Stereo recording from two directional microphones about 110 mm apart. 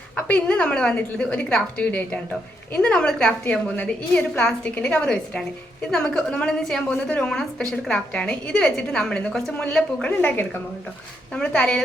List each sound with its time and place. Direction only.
0.2 s a woman's voice: 10° left (ahead or behind)
11.3 s speech: 5° left (ahead or behind)